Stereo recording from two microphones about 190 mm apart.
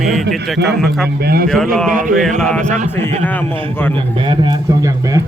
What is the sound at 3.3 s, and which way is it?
Speech, 10° left (ahead or behind).